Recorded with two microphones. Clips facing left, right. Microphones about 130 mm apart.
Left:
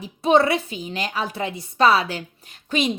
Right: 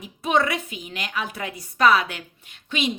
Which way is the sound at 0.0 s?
30° left (ahead or behind).